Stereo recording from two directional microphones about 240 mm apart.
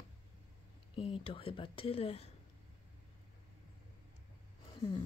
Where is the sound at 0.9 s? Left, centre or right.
Left.